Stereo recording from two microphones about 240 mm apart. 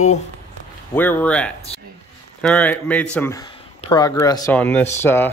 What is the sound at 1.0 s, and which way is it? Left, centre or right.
A man's voice, centre.